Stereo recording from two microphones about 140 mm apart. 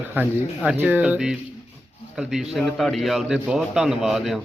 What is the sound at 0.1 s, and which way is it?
A man's voice, 10° right (ahead or behind).